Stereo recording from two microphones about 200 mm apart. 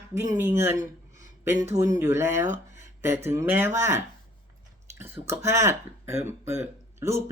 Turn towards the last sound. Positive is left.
turn(degrees=-15)  # may be behind; listen again after turning